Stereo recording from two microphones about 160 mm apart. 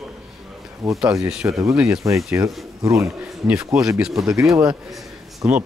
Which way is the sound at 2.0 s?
20° right (ahead or behind).